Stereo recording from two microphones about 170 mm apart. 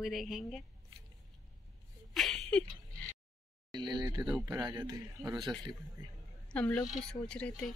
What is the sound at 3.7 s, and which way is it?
A man's voice, 25° right (ahead or behind).